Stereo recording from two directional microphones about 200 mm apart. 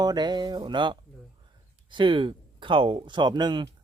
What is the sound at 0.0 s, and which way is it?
Speech, 20° right (ahead or behind).